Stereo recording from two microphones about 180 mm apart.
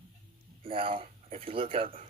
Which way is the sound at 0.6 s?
30° right (ahead or behind).